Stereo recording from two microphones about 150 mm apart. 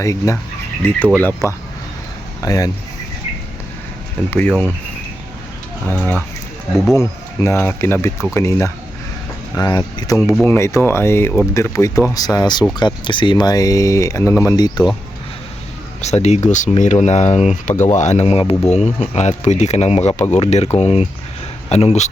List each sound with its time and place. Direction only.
0.0 s speech: 20° left (ahead or behind)
4.3 s speech: 10° left (ahead or behind)
5.9 s speech: 10° left (ahead or behind)
6.7 s speech: centre (ahead or behind)
7.0 s speech: 15° left (ahead or behind)
10.4 s speech: 15° left (ahead or behind)
16.0 s speech: 50° left (ahead or behind)